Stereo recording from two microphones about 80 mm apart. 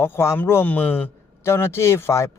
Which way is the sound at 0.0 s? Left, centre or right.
Left.